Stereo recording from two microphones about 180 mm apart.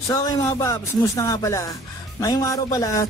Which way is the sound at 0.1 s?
15° left (ahead or behind).